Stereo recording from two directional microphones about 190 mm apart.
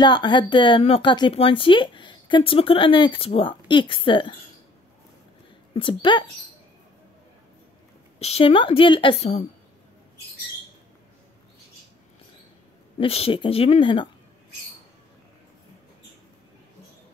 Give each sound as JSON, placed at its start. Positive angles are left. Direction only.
{"t": 0.0, "sound": "speech", "side_deg": 25}
{"t": 5.8, "sound": "speech", "side_deg": 25}
{"t": 8.2, "sound": "speech", "side_deg": 30}
{"t": 13.0, "sound": "speech", "side_deg": 30}